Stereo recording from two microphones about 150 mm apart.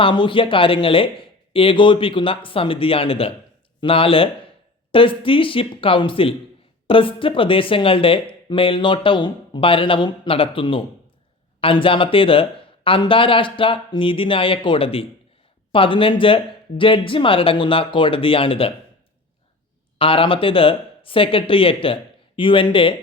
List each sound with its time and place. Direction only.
0.0 s speech: 35° left (ahead or behind)
20.0 s speech: 35° left (ahead or behind)